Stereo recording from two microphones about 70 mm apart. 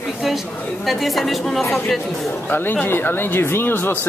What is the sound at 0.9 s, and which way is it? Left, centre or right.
Speech, centre.